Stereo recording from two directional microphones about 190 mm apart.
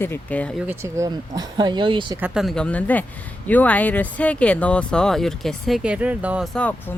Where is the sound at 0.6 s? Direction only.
15° right (ahead or behind).